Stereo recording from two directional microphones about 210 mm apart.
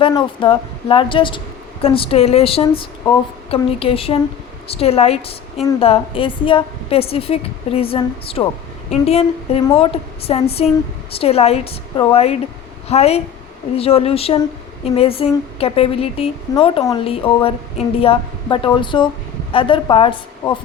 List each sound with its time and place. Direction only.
0.1 s a woman's voice: 25° left (ahead or behind)